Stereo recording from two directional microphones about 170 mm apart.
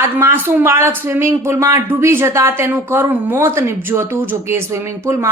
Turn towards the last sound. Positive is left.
turn(degrees=-15)  # may be behind; listen again after turning